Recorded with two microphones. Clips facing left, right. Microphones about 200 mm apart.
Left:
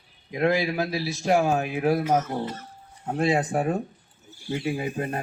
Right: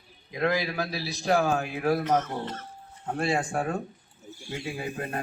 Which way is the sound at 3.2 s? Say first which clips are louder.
Left 4 dB; 20° left (ahead or behind).